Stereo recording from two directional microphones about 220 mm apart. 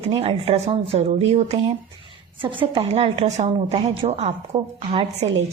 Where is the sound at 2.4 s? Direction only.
25° right (ahead or behind).